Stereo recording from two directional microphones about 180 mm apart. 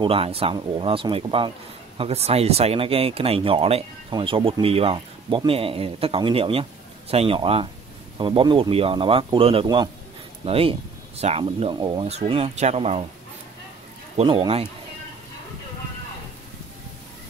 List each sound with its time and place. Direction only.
0.0 s speech: 30° right (ahead or behind)
14.1 s speech: 30° right (ahead or behind)